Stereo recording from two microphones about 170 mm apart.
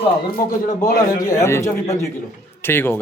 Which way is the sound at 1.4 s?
15° left (ahead or behind).